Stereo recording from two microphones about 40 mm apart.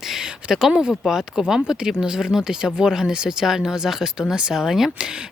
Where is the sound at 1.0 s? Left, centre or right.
Centre.